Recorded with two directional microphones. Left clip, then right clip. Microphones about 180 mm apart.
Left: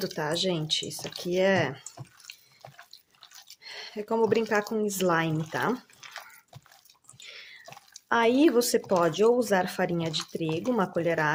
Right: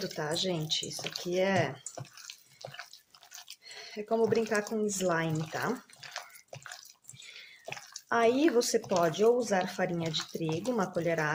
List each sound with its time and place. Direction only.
0.0 s speech: 40° left (ahead or behind)
3.6 s speech: 45° left (ahead or behind)
8.1 s speech: 40° left (ahead or behind)